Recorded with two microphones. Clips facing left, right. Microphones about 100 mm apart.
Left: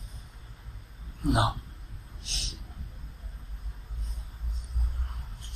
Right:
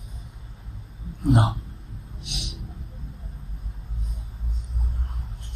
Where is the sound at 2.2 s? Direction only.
15° right (ahead or behind).